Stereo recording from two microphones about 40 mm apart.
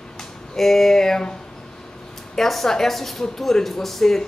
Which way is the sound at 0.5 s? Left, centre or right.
Centre.